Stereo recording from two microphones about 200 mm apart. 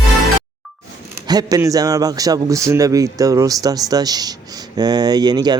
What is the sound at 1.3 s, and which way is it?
A man's voice, 20° right (ahead or behind).